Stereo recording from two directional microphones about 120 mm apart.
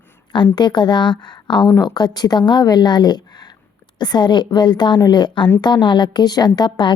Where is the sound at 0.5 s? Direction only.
40° left (ahead or behind).